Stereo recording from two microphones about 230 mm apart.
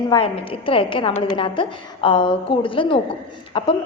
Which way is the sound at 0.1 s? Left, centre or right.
Left.